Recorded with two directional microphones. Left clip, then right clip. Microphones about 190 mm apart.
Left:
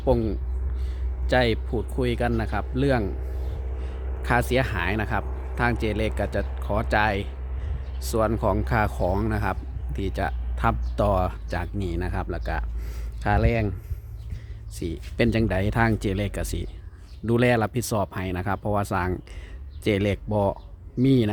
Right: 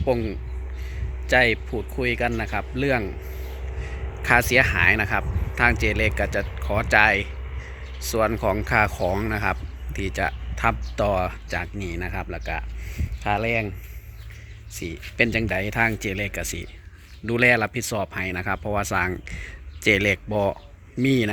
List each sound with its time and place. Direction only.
0.0 s speech: 15° left (ahead or behind)
4.2 s speech: 5° left (ahead or behind); by 13.7 s 25° left (ahead or behind)
14.8 s speech: 20° left (ahead or behind)